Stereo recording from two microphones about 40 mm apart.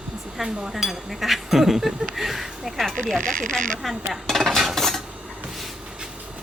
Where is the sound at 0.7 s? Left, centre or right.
Centre.